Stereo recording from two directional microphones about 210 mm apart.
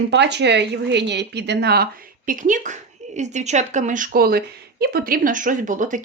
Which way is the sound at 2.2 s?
40° right (ahead or behind).